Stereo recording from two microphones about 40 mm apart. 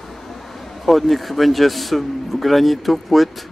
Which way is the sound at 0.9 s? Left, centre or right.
Centre.